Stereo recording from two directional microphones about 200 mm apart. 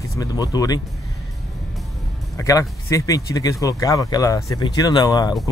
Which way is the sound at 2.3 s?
15° left (ahead or behind).